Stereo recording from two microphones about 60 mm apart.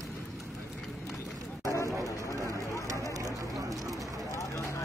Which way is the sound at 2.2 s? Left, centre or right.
Right.